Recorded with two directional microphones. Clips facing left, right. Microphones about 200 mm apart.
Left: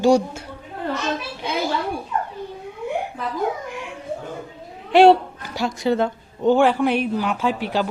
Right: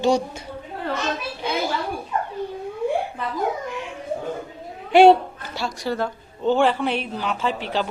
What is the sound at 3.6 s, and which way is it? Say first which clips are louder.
Dog: right 2 dB; 10° left (ahead or behind).